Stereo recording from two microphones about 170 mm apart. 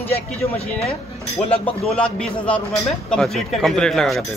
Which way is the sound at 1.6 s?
5° left (ahead or behind).